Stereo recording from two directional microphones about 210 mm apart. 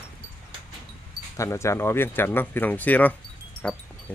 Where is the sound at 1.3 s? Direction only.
15° left (ahead or behind).